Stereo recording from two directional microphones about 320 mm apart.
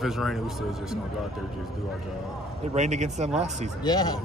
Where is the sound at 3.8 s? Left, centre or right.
Centre.